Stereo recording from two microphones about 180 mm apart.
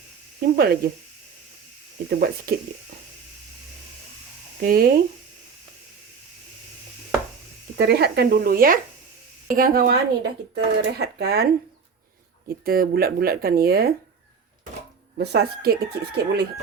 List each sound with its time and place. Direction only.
0.3 s speech: 60° right (ahead or behind)
2.0 s speech: 60° right (ahead or behind)
4.6 s speech: 55° right (ahead or behind)
7.8 s speech: 65° right (ahead or behind)
12.6 s speech: 55° right (ahead or behind)
15.2 s speech: 65° right (ahead or behind)